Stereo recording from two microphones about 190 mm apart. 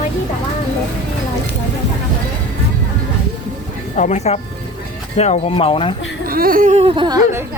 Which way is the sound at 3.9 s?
40° left (ahead or behind).